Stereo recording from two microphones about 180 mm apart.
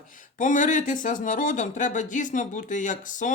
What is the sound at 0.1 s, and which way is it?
Speech, 45° left (ahead or behind).